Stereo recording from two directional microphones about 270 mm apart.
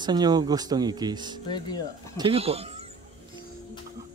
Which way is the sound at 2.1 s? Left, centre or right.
Right.